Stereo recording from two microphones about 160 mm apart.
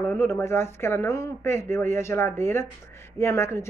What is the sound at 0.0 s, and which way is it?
Speech, 15° left (ahead or behind).